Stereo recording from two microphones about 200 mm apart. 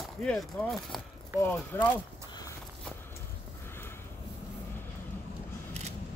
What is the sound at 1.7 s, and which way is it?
Speech, 10° left (ahead or behind).